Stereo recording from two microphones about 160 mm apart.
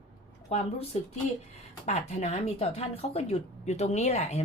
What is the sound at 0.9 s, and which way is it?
Speech, 45° left (ahead or behind).